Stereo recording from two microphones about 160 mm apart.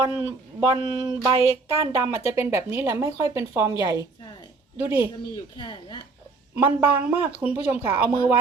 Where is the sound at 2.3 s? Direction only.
15° right (ahead or behind).